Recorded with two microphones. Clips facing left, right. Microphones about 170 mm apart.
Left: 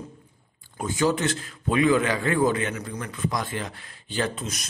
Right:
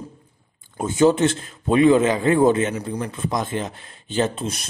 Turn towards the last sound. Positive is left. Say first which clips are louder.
# right 6 dB
turn(degrees=-30)  # may be behind; listen again after turning